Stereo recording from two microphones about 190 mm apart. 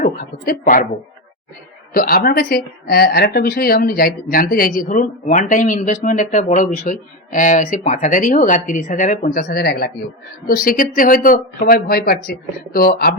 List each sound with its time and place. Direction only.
0.0 s a woman's voice: 45° left (ahead or behind)
1.9 s a woman's voice: 50° left (ahead or behind)